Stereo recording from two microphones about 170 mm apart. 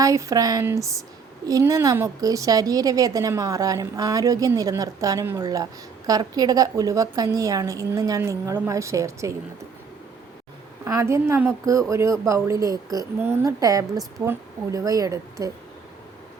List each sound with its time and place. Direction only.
0.0 s a woman's voice: 20° right (ahead or behind)
10.8 s a woman's voice: 15° right (ahead or behind)